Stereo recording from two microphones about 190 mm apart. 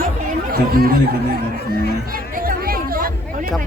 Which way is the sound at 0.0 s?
50° right (ahead or behind).